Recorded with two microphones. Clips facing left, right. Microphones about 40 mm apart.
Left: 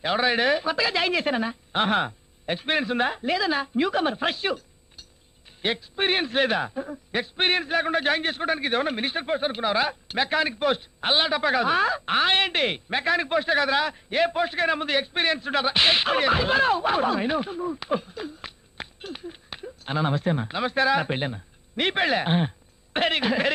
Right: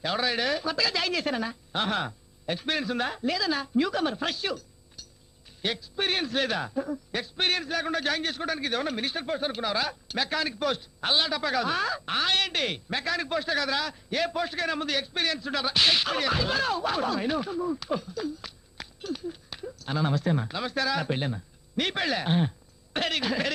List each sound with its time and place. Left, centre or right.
0.0 s a man's voice: left